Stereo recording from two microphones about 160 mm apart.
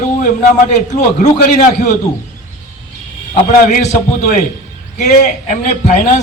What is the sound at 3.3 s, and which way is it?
A man's voice, 50° left (ahead or behind).